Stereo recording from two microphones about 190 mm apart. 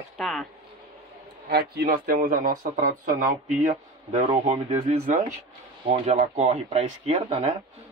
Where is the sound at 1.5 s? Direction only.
55° right (ahead or behind); by 7.5 s 35° right (ahead or behind).